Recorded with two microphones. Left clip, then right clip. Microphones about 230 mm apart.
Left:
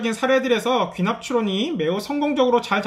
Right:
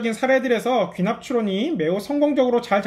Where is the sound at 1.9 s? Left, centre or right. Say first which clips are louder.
Right 2 dB; right.